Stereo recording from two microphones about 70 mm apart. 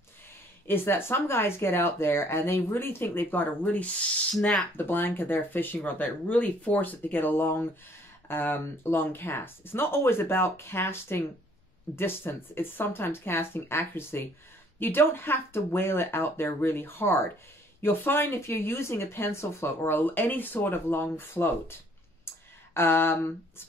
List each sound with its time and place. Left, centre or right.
0.7 s speech: left
4.3 s speech: centre
4.7 s speech: left
22.8 s speech: left